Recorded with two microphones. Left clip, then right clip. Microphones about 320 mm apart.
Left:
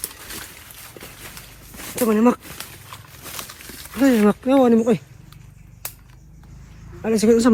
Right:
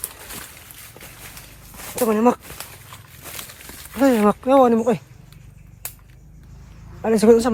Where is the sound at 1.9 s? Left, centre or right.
Centre.